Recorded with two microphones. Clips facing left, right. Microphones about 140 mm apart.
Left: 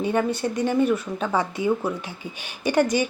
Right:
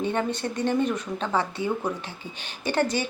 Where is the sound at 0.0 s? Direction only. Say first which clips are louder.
Left 4 dB; 10° left (ahead or behind).